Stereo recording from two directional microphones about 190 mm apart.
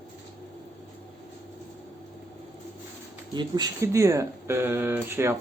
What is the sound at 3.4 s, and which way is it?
Speech, 20° right (ahead or behind).